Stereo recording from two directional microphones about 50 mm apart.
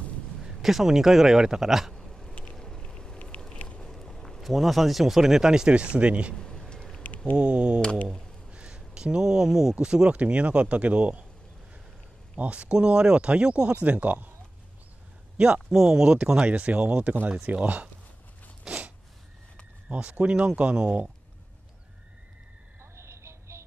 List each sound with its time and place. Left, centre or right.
0.4 s speech: centre
2.0 s a sound: centre
2.5 s vehicle: centre
3.9 s a sound: centre
4.4 s speech: centre; by 6.3 s right
6.3 s a sound: centre
7.3 s speech: centre
10.1 s speech: right
12.4 s speech: right
13.8 s speech: right
15.3 s speech: centre
18.7 s a sound: centre
19.9 s speech: right
22.8 s music: right